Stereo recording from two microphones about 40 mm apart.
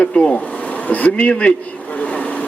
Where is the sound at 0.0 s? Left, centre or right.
Left.